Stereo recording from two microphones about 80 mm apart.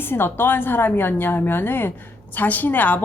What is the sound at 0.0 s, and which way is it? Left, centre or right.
A woman's voice, left.